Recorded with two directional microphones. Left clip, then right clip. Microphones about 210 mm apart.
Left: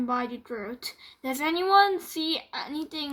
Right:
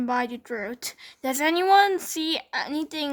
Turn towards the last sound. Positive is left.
turn(degrees=-45)  # may be behind; listen again after turning